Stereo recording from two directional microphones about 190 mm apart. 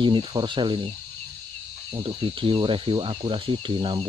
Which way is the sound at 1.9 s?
30° right (ahead or behind).